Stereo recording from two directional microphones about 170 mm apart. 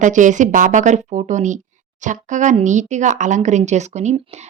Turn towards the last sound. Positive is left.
turn(degrees=-40)  # may be behind; listen again after turning